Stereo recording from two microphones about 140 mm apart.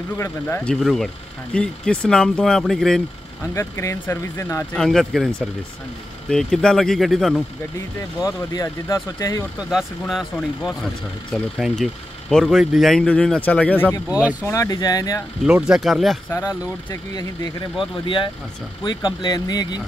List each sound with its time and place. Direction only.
0.2 s speech: 15° left (ahead or behind)
3.5 s speech: 20° left (ahead or behind)
4.7 s speech: centre (ahead or behind)
8.2 s speech: 25° left (ahead or behind)
9.6 s speech: 5° right (ahead or behind)
11.3 s speech: centre (ahead or behind)
14.0 s speech: 5° right (ahead or behind)
14.4 s speech: 20° left (ahead or behind)
15.4 s speech: 5° right (ahead or behind)
16.9 s speech: 30° left (ahead or behind)